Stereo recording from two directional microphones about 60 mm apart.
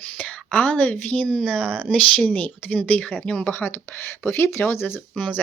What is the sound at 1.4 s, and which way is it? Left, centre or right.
Speech, centre.